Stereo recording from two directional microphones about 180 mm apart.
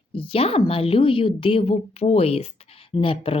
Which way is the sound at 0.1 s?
30° left (ahead or behind).